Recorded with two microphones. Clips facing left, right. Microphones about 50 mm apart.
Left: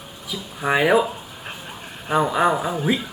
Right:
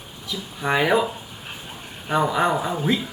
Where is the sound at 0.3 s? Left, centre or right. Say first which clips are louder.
Left 1 dB; centre.